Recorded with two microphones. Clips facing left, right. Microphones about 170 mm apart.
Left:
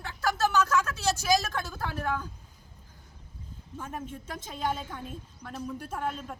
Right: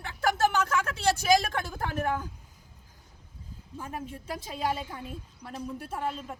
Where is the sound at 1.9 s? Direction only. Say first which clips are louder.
Right 3 dB; 45° right (ahead or behind).